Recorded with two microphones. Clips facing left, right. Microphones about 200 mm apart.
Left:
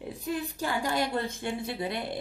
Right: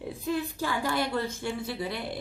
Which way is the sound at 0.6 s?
15° left (ahead or behind).